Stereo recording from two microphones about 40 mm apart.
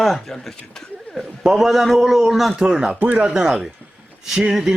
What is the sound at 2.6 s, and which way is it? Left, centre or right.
Speech, centre.